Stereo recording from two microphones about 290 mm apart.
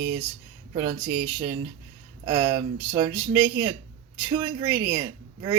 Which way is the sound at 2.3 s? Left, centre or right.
Centre.